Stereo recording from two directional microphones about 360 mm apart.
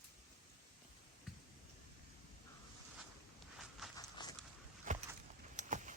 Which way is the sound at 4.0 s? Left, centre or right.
Centre.